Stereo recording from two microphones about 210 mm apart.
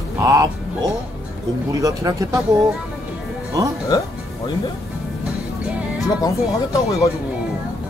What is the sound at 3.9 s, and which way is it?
Speech, 20° left (ahead or behind).